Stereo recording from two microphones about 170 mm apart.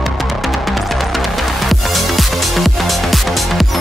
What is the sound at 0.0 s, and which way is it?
Music, centre (ahead or behind).